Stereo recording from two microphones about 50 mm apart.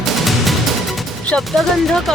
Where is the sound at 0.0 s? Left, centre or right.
Centre.